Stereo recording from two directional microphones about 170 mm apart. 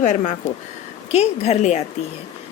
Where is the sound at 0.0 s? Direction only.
45° left (ahead or behind).